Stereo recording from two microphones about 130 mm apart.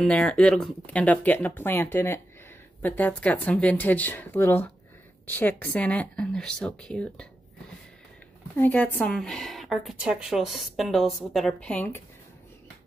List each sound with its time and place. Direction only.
0.0 s speech: 10° left (ahead or behind)
8.5 s a woman's voice: 10° left (ahead or behind)